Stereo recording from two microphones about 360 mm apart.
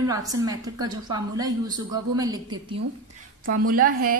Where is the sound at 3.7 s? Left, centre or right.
Right.